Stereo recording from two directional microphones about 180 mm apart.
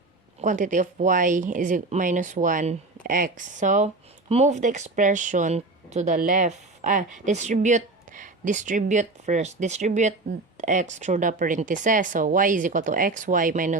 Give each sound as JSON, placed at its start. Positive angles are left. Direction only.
{"t": 0.4, "sound": "speech", "side_deg": -45}